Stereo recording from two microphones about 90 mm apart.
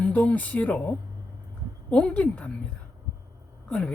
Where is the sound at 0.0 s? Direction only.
15° left (ahead or behind).